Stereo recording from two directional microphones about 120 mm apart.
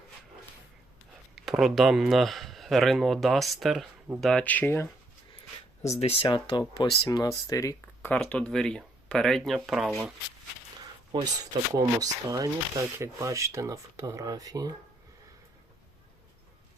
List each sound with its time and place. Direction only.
1.4 s speech: centre (ahead or behind)
4.4 s speech: 15° left (ahead or behind)
5.4 s a sound: 60° left (ahead or behind)
6.2 s speech: 40° left (ahead or behind)
8.0 s speech: 10° left (ahead or behind)
11.1 s speech: 35° right (ahead or behind)